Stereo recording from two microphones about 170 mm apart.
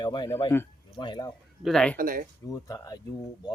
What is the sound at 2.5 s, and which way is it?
Speech, 20° left (ahead or behind).